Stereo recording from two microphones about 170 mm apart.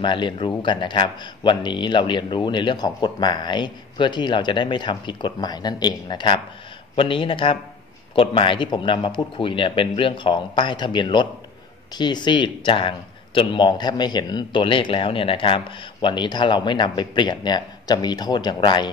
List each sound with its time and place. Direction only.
0.0 s a man's voice: 30° left (ahead or behind)